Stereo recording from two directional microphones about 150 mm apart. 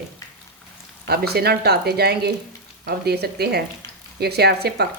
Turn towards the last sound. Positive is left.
turn(degrees=-90)